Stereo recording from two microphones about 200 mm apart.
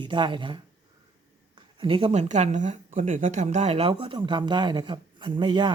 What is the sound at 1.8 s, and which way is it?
Speech, 25° right (ahead or behind).